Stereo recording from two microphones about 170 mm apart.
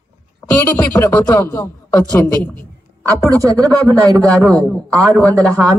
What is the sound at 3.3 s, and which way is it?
Speech, 20° right (ahead or behind).